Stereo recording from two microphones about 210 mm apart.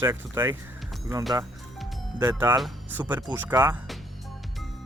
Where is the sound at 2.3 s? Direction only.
5° right (ahead or behind).